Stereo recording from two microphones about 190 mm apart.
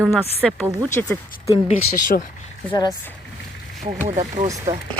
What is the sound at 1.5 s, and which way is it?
Speech, 40° left (ahead or behind).